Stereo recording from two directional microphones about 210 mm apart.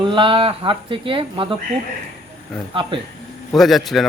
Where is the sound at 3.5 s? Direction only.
Centre (ahead or behind).